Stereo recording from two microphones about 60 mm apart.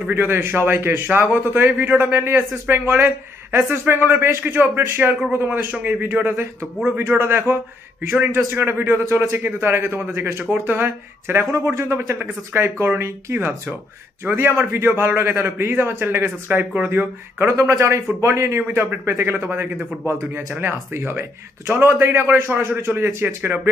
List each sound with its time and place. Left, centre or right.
0.1 s a man's voice: right
8.0 s a man's voice: right
8.5 s a man's voice: right
11.5 s a man's voice: right
17.5 s a man's voice: right